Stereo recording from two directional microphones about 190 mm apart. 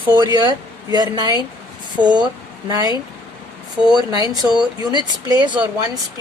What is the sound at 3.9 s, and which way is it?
Speech, 20° right (ahead or behind).